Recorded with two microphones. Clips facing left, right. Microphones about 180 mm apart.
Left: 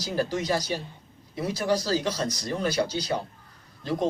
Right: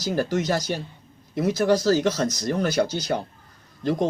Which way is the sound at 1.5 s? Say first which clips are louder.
Right 5 dB; 45° right (ahead or behind).